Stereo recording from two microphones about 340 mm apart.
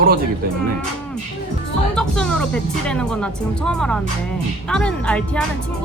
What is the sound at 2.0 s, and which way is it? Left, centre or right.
Speech, centre.